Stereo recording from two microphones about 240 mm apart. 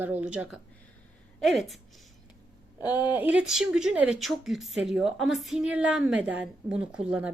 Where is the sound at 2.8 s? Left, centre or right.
Centre.